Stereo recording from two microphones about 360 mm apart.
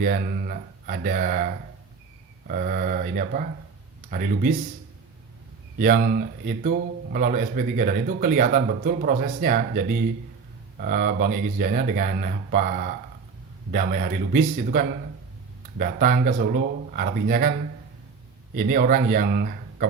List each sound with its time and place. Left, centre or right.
0.0 s speech: right
2.5 s speech: right
5.8 s speech: right
18.5 s speech: right